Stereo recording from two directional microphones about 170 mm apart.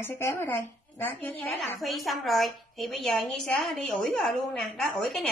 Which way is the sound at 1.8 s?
Centre (ahead or behind).